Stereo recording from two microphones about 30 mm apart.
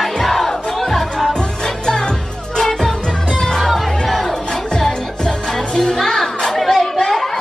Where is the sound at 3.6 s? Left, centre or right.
Centre.